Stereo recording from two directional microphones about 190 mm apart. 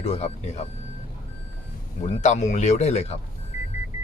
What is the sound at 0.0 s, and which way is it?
Speech, 35° left (ahead or behind).